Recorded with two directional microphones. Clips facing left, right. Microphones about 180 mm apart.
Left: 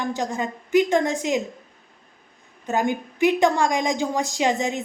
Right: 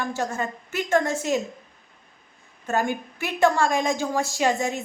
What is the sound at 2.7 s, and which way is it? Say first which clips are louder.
A woman's voice: left 2 dB; 15° left (ahead or behind).